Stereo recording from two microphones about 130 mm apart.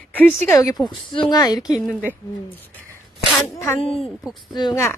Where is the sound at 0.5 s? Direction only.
25° left (ahead or behind).